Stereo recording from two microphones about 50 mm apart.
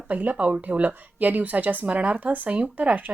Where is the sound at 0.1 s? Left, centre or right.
Right.